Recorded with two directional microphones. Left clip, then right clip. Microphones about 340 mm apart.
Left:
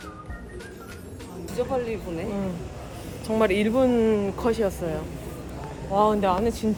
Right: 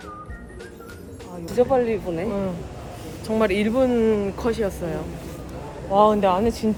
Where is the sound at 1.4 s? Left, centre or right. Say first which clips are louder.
Right 8 dB; right.